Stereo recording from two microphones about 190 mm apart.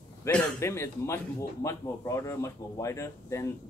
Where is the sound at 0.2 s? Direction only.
10° left (ahead or behind).